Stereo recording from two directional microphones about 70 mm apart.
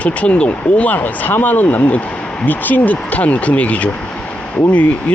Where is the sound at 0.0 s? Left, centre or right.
Centre.